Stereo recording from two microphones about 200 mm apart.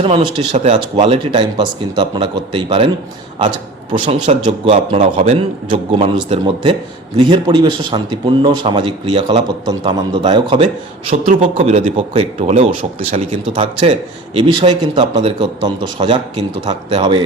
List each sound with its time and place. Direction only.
0.0 s speech: 30° right (ahead or behind)
4.0 s a man's voice: 25° right (ahead or behind)
11.1 s a man's voice: 40° right (ahead or behind)